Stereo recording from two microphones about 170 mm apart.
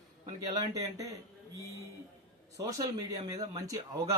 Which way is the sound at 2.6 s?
20° right (ahead or behind).